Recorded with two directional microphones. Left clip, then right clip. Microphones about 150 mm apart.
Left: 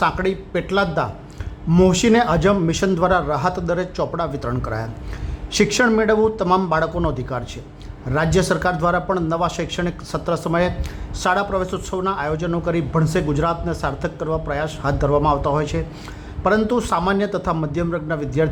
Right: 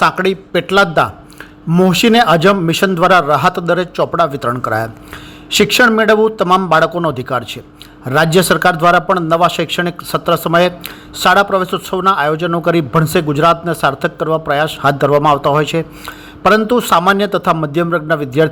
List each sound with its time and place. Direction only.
0.0 s a man's voice: 30° right (ahead or behind)
6.0 s a man's voice: 30° right (ahead or behind)